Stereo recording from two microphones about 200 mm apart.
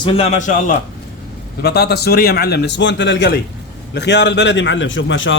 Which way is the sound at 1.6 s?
55° left (ahead or behind).